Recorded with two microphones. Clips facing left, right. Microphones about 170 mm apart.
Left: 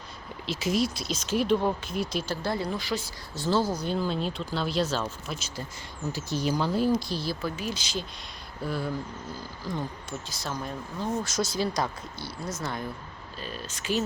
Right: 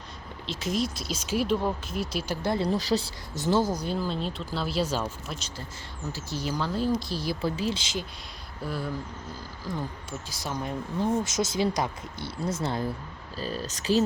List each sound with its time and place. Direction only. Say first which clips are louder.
0.4 s speech: left 2 dB; 5° left (ahead or behind)
2.2 s speech: right 2 dB; 15° right (ahead or behind)
2.6 s speech: right 5 dB; 35° right (ahead or behind)
3.3 s speech: right 1 dB; 20° right (ahead or behind)
3.8 s speech: left 1 dB; centre (ahead or behind)
5.3 s speech: left 1 dB; centre (ahead or behind)
6.1 s speech: left 4 dB; 15° left (ahead or behind)
7.1 s speech: even; 10° right (ahead or behind)
7.4 s speech: right 4 dB; 30° right (ahead or behind)
8.6 s speech: left 2 dB; centre (ahead or behind); by 14.0 s 35° right (ahead or behind)